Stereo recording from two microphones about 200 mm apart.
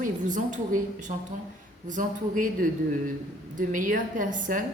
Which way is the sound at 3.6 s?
40° right (ahead or behind).